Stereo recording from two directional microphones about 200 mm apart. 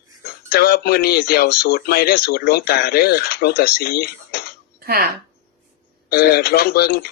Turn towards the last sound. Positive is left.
turn(degrees=50)  # may be behind; listen again after turning